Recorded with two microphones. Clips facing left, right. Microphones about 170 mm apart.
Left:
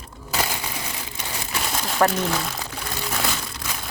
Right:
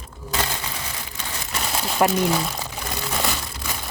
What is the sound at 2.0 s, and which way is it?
Speech, 15° right (ahead or behind).